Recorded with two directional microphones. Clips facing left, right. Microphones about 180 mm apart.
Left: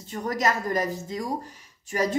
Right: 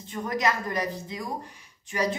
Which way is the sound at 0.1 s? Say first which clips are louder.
Left 1 dB; 40° left (ahead or behind).